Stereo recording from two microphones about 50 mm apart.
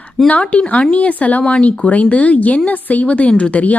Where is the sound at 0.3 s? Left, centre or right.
Left.